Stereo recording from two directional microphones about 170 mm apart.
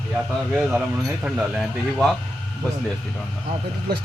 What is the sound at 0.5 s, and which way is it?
Speech, 5° right (ahead or behind).